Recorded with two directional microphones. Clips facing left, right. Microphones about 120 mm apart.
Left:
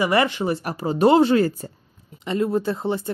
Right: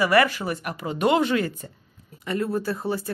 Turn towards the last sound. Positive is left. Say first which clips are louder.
# left 3 dB
turn(degrees=20)  # may be behind; listen again after turning